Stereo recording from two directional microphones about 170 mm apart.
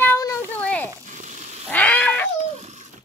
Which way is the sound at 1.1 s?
45° right (ahead or behind).